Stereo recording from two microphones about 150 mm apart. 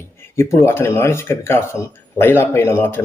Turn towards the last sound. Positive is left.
turn(degrees=15)  # may be behind; listen again after turning